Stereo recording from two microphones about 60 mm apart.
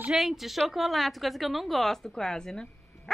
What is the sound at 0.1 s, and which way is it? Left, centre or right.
A woman's voice, centre.